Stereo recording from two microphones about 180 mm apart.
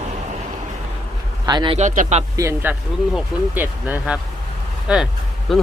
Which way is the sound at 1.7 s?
45° right (ahead or behind).